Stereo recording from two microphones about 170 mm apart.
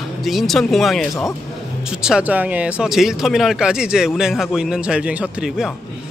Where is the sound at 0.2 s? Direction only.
Centre (ahead or behind).